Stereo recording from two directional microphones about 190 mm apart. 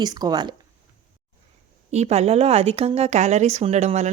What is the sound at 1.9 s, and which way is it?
Speech, 35° right (ahead or behind).